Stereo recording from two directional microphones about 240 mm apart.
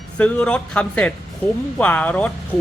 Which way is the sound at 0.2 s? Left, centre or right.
Centre.